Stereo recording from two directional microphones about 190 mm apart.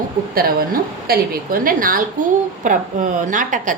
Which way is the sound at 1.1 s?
45° right (ahead or behind).